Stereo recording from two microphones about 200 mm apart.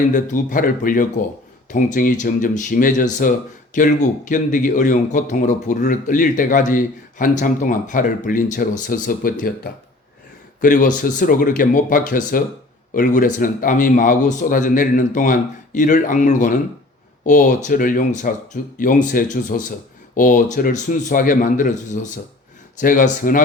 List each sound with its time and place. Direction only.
0.1 s speech: 40° left (ahead or behind)
10.6 s speech: 40° left (ahead or behind)